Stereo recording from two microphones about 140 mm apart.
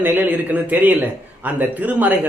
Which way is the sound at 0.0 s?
15° right (ahead or behind).